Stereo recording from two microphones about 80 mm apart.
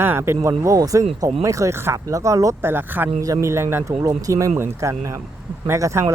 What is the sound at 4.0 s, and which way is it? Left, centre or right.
Speech, right.